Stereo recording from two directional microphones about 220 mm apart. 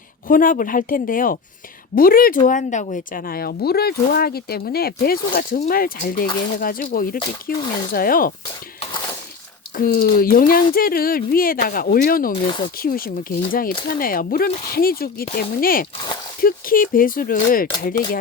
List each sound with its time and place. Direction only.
0.3 s speech: 40° left (ahead or behind)
9.7 s speech: 40° left (ahead or behind)
12.3 s speech: 20° left (ahead or behind)
12.7 s speech: 40° left (ahead or behind)